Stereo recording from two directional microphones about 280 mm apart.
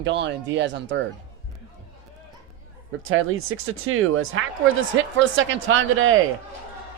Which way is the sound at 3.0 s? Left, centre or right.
Right.